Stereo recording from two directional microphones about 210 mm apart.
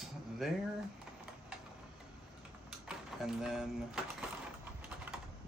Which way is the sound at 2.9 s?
5° right (ahead or behind).